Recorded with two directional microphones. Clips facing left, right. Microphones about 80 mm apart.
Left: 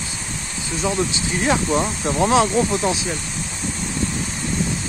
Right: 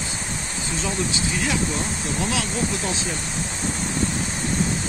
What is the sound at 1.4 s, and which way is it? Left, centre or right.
Speech, left.